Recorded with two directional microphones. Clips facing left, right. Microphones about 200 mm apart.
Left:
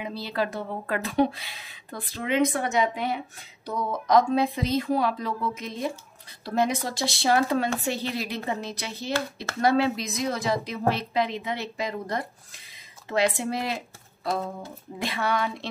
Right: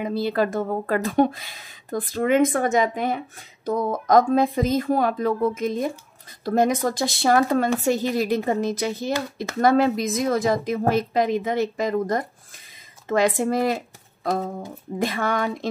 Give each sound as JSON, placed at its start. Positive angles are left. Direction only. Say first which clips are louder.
{"t": 0.0, "sound": "speech", "louder": "right 7 dB", "side_deg": -50}
{"t": 15.0, "sound": "speech", "louder": "right 4 dB", "side_deg": -45}